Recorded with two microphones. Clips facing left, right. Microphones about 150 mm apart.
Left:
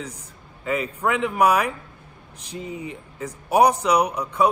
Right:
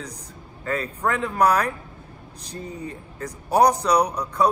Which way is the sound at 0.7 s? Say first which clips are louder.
Left 1 dB; 10° left (ahead or behind).